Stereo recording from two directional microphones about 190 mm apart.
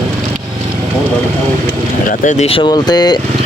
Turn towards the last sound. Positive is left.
turn(degrees=20)  # may be behind; listen again after turning